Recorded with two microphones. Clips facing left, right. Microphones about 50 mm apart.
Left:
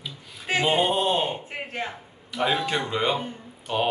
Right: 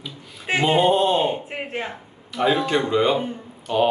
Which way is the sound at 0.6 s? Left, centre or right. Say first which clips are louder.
Right 5 dB; centre.